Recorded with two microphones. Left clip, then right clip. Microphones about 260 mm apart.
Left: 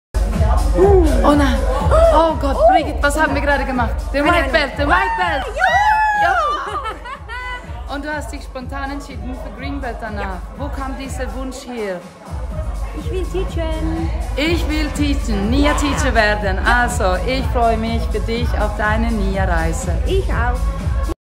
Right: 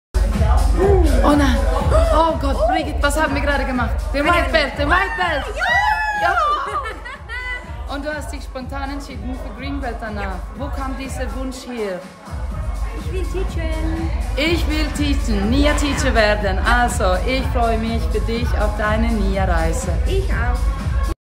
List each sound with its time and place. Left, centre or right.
1.0 s a woman's voice: centre
6.1 s a sound: centre
6.7 s music: centre
7.9 s a woman's voice: centre
11.7 s a woman's voice: centre
14.3 s a woman's voice: centre
20.1 s a woman's voice: centre